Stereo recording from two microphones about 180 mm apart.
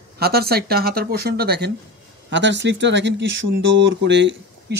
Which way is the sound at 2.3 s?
80° right.